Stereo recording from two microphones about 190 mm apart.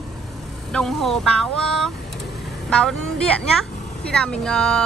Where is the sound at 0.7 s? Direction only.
Centre (ahead or behind).